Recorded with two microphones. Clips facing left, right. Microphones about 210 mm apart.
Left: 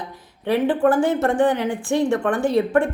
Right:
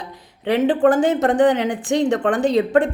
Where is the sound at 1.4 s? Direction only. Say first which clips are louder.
Right 3 dB; 70° right (ahead or behind).